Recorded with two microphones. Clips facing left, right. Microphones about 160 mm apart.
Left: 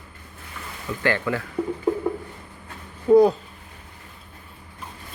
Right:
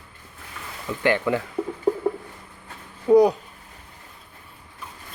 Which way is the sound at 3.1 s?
15° right (ahead or behind).